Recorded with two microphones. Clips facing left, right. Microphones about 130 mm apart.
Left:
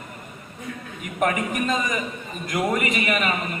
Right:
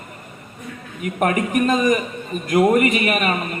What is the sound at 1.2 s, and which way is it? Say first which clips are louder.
A man's voice: right 4 dB; 50° right (ahead or behind).